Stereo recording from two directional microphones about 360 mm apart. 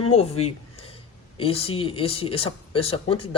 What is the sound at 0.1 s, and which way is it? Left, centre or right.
A man's voice, centre.